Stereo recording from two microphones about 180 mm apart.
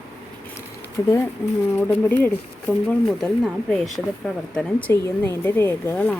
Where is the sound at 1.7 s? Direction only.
10° left (ahead or behind).